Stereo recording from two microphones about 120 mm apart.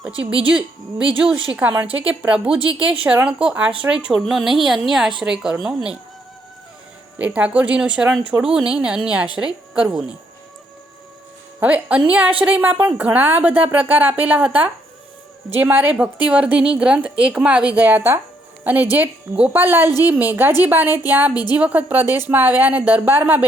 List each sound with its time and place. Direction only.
0.5 s a woman's voice: 5° right (ahead or behind)
7.2 s a woman's voice: 10° right (ahead or behind)
11.6 s a woman's voice: 10° right (ahead or behind)